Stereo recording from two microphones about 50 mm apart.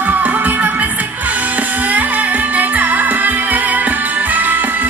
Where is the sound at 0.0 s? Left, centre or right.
Right.